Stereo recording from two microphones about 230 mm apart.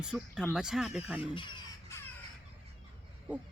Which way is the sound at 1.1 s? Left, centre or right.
Left.